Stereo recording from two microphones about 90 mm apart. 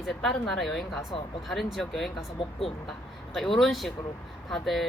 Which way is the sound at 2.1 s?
90° left.